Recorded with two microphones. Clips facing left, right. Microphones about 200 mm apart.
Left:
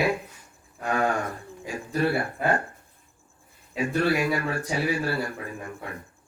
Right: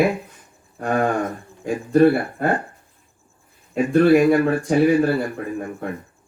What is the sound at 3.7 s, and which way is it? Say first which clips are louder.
A man's voice: right 10 dB; 55° right (ahead or behind).